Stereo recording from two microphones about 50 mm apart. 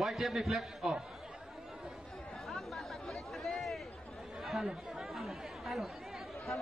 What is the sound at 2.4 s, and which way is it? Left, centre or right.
Chatter, centre.